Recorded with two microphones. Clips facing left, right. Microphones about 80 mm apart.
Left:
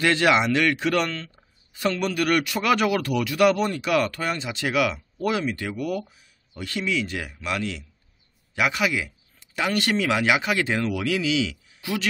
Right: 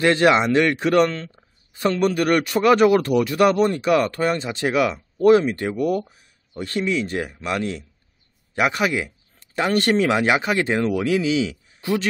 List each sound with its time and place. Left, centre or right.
0.0 s a man's voice: right